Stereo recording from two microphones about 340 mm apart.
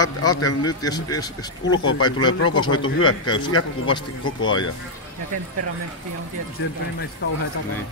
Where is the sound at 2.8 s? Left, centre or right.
Left.